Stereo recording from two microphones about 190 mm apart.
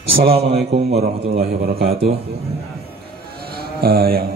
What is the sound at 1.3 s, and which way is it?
Speech, 55° right (ahead or behind).